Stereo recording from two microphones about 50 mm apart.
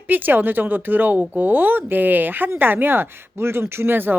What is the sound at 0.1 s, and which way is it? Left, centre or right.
Speech, right.